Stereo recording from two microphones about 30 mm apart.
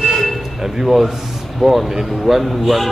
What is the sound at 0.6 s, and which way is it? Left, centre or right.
Speech, centre.